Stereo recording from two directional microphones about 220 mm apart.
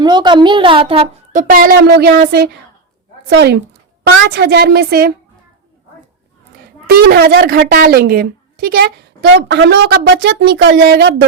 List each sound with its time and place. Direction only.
0.0 s a child's voice: 20° right (ahead or behind)
1.3 s speech: 35° right (ahead or behind)
3.2 s a woman's voice: 50° right (ahead or behind)
6.8 s a woman's voice: 45° right (ahead or behind)